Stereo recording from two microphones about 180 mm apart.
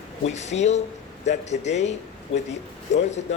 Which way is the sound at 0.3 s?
40° left (ahead or behind).